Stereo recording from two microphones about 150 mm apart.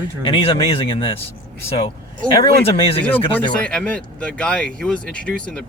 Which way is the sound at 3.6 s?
5° left (ahead or behind).